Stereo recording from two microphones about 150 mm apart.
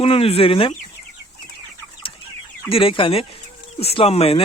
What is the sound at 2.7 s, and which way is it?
Speech, 35° left (ahead or behind).